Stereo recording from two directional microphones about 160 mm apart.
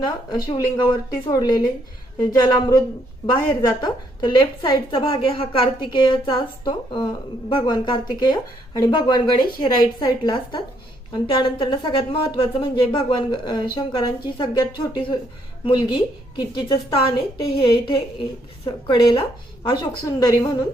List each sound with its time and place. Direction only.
0.0 s a woman's voice: 25° left (ahead or behind)
7.6 s a woman's voice: 30° left (ahead or behind)